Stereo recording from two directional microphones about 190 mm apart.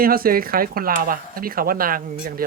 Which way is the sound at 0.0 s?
50° right (ahead or behind).